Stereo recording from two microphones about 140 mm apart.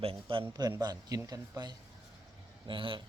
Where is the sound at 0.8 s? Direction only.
30° right (ahead or behind).